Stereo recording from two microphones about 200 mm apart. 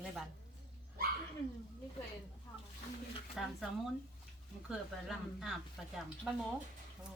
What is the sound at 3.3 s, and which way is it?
A woman's voice, centre (ahead or behind).